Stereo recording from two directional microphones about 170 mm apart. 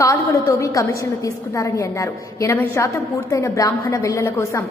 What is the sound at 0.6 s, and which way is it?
A woman's voice, 20° left (ahead or behind).